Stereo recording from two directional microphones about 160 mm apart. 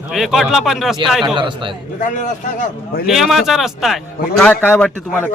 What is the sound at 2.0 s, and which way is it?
A man's voice, 55° left (ahead or behind).